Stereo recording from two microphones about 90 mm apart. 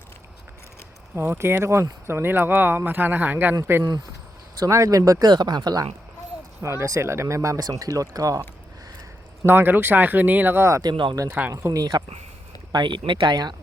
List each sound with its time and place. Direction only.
1.1 s speech: 25° right (ahead or behind)
4.6 s speech: 35° right (ahead or behind)
5.2 s speech: 50° right (ahead or behind)
6.6 s speech: 30° right (ahead or behind)
9.5 s speech: 25° right (ahead or behind)
10.8 s speech: 65° right (ahead or behind)
11.3 s speech: 20° right (ahead or behind)
11.5 s speech: 40° right (ahead or behind)
12.7 s speech: 60° right (ahead or behind)